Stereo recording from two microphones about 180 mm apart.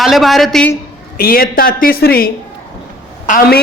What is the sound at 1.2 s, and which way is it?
A woman's voice, 55° left (ahead or behind).